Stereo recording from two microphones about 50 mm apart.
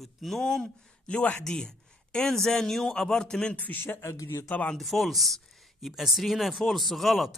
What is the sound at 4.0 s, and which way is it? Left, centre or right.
Speech, left.